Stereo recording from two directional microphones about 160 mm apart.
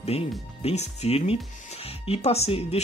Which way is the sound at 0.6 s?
40° left (ahead or behind).